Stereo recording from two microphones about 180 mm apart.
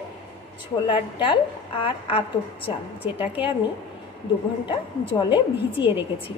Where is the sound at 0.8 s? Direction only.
30° left (ahead or behind).